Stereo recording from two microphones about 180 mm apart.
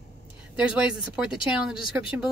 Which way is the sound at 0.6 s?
5° right (ahead or behind).